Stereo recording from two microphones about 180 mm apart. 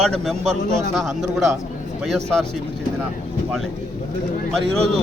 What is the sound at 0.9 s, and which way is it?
A man's voice, centre (ahead or behind).